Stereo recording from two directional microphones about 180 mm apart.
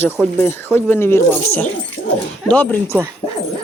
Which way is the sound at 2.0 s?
90° left.